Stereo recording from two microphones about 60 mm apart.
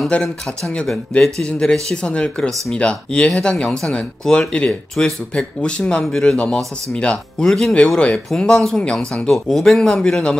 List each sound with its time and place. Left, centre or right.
0.1 s speech: centre